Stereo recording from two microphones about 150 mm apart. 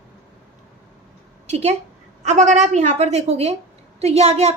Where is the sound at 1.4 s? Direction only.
45° right (ahead or behind).